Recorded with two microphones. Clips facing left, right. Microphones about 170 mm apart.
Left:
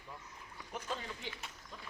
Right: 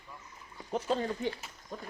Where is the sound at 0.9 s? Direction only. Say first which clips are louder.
Right 12 dB; 45° right (ahead or behind).